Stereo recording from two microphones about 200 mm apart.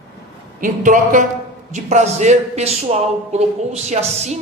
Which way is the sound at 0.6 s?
40° right (ahead or behind).